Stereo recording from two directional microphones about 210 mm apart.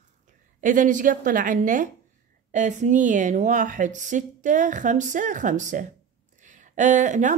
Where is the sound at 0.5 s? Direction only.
40° right (ahead or behind).